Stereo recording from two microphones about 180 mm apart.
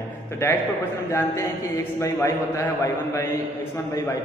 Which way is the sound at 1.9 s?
15° left (ahead or behind).